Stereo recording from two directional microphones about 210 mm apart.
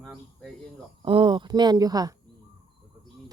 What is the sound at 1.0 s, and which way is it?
Speech, 25° right (ahead or behind).